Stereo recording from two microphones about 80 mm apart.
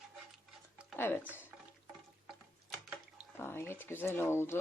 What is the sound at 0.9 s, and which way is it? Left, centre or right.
Speech, left.